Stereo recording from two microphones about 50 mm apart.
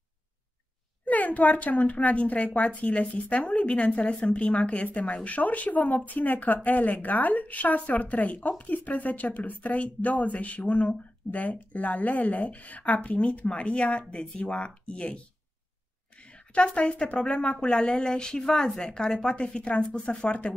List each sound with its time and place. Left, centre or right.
1.0 s a woman's voice: left; by 18.5 s centre
18.5 s speech: centre
18.8 s a woman's voice: centre